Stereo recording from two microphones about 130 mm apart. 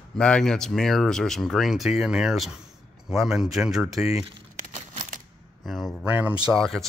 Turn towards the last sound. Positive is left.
turn(degrees=0)  # may be behind; listen again after turning